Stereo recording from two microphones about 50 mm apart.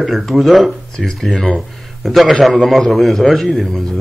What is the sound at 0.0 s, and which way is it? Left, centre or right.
A man's voice, centre.